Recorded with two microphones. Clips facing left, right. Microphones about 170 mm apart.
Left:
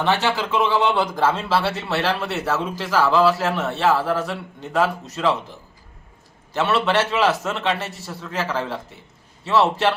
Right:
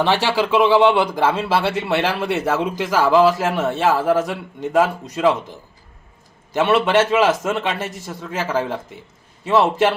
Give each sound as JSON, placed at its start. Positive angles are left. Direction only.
{"t": 0.3, "sound": "a man's voice", "side_deg": -15}
{"t": 6.5, "sound": "a man's voice", "side_deg": -15}
{"t": 9.6, "sound": "a man's voice", "side_deg": -15}